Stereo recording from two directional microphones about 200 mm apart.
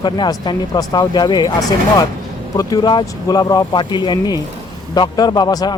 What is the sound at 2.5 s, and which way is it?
A man's voice, 20° left (ahead or behind).